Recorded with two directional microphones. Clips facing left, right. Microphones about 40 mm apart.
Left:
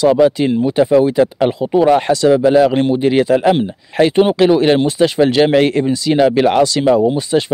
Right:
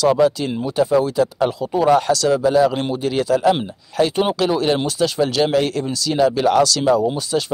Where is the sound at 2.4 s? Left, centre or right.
Left.